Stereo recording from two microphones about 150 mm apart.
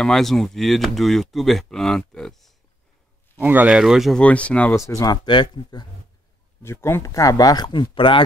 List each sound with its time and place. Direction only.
0.0 s speech: 5° left (ahead or behind)
3.3 s speech: 10° right (ahead or behind); by 4.7 s 10° left (ahead or behind)
4.7 s speech: 20° left (ahead or behind)
6.6 s speech: 15° left (ahead or behind); by 8.2 s 35° left (ahead or behind)